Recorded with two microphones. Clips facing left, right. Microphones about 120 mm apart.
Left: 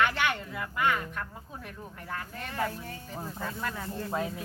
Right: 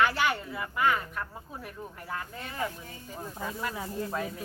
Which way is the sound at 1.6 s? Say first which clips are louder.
Right 1 dB; 10° right (ahead or behind).